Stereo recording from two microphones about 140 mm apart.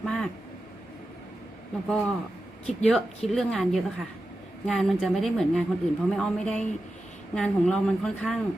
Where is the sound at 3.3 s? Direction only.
5° left (ahead or behind).